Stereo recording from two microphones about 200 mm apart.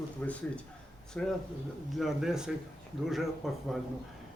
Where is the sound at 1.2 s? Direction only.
5° left (ahead or behind).